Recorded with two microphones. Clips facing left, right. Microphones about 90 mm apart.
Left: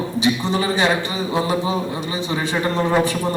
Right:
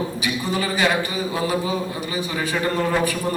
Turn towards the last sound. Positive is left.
turn(degrees=25)  # may be behind; listen again after turning